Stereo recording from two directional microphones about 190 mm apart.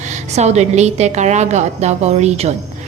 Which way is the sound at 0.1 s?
35° right (ahead or behind).